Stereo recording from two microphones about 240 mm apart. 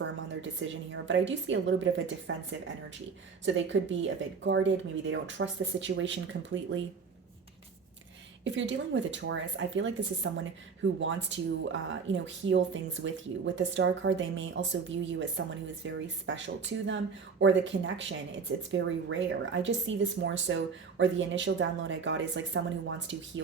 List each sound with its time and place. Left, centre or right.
0.4 s speech: right
8.4 s speech: right